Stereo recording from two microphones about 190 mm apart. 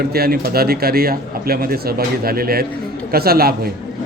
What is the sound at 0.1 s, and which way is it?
A man's voice, 55° right (ahead or behind).